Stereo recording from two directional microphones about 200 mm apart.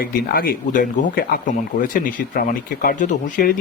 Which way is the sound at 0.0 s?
50° left (ahead or behind).